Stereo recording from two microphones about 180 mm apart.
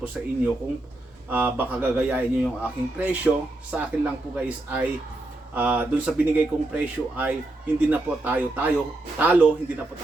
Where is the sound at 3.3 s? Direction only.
Centre (ahead or behind).